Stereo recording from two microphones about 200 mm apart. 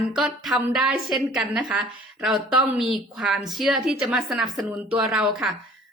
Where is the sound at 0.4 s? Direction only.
Centre (ahead or behind).